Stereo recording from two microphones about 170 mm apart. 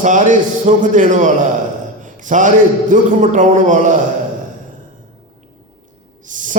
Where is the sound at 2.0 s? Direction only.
50° right (ahead or behind).